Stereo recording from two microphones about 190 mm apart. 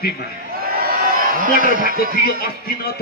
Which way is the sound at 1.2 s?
45° right (ahead or behind).